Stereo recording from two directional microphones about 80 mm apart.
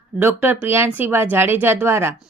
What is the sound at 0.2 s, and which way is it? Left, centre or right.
Speech, right.